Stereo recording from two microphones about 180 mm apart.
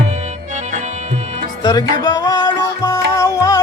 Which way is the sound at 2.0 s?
20° left (ahead or behind).